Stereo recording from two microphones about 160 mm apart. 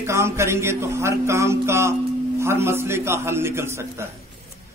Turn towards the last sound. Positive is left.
turn(degrees=-15)  # may be behind; listen again after turning